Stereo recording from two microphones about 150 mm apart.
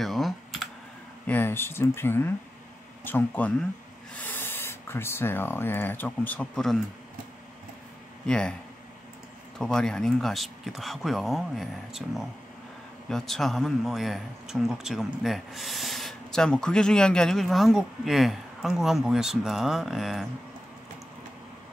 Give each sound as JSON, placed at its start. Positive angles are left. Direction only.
{"t": 0.0, "sound": "computer keyboard", "side_deg": 0}
{"t": 1.2, "sound": "speech", "side_deg": 15}
{"t": 8.3, "sound": "speech", "side_deg": 5}
{"t": 9.6, "sound": "speech", "side_deg": 5}